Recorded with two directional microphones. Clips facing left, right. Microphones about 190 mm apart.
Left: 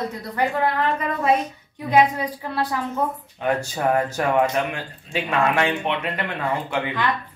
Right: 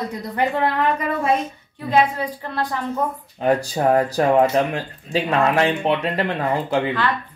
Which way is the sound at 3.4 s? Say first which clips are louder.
Right 4 dB; 35° right (ahead or behind).